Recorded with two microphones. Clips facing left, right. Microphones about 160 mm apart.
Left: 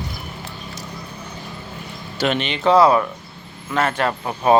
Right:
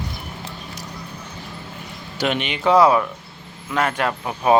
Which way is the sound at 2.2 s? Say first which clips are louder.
Left 2 dB; 10° right (ahead or behind).